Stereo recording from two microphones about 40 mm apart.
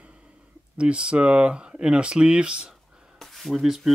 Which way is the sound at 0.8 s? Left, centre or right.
Right.